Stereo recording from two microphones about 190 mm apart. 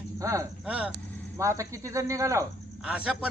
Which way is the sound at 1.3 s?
15° right (ahead or behind).